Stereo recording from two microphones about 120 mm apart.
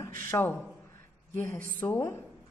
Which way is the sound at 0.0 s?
20° left (ahead or behind).